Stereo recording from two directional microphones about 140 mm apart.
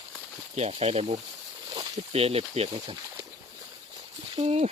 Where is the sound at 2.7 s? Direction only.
30° right (ahead or behind).